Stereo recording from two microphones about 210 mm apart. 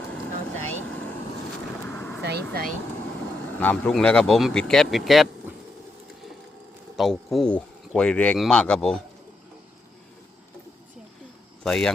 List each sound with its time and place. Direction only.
0.5 s vehicle: 10° left (ahead or behind)
1.8 s vehicle: 10° left (ahead or behind)
2.2 s speech: 50° right (ahead or behind)
3.6 s speech: 5° left (ahead or behind)
6.9 s speech: centre (ahead or behind)
11.6 s speech: centre (ahead or behind)